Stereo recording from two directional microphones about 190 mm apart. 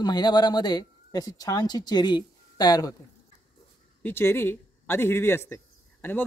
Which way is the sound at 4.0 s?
10° left (ahead or behind).